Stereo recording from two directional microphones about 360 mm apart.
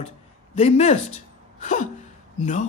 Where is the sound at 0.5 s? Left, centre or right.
Centre.